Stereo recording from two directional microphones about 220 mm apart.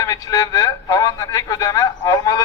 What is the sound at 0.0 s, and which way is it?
Speech, 15° left (ahead or behind).